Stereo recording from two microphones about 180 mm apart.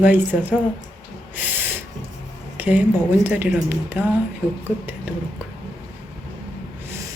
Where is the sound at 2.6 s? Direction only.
10° right (ahead or behind).